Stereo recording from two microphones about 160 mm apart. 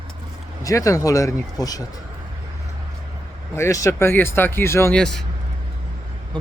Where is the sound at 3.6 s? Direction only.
20° left (ahead or behind).